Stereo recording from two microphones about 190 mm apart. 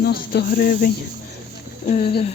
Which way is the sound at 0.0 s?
55° left (ahead or behind).